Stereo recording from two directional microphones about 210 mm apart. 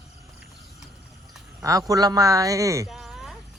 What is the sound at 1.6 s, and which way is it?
A man's voice, 15° right (ahead or behind).